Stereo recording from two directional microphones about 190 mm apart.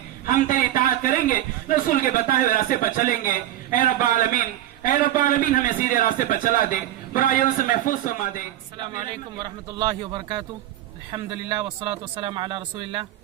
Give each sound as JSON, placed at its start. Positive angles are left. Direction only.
{"t": 0.3, "sound": "a man's voice", "side_deg": 45}
{"t": 9.4, "sound": "speech", "side_deg": -25}